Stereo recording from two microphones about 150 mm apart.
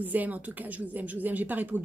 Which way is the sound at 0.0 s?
10° right (ahead or behind).